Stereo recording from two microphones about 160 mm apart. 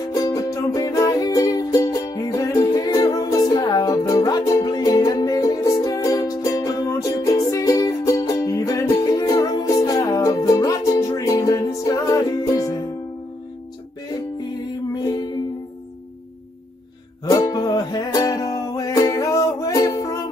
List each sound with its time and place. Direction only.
0.1 s music: 20° left (ahead or behind)
14.9 s music: 25° left (ahead or behind)
17.2 s music: 25° left (ahead or behind)